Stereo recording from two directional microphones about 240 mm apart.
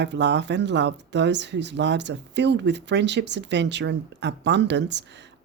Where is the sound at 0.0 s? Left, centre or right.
Right.